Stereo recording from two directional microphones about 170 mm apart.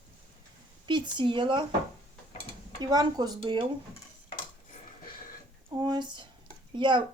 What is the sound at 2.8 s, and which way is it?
Speech, 25° right (ahead or behind).